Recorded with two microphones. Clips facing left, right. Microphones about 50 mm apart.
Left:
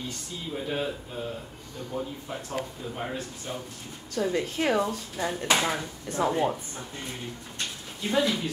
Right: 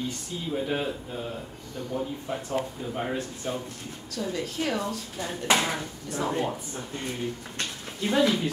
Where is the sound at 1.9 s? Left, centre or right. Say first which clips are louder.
Right 2 dB; centre.